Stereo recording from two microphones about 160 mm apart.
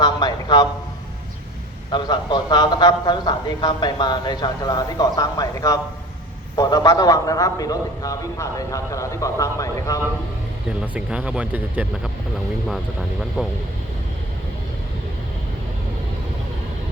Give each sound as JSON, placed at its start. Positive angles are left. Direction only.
{"t": 0.0, "sound": "a sound", "side_deg": 25}
{"t": 1.9, "sound": "speech", "side_deg": 30}
{"t": 10.7, "sound": "speech", "side_deg": -5}